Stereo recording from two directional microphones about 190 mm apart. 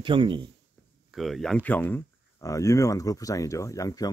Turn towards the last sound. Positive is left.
turn(degrees=15)  # may be behind; listen again after turning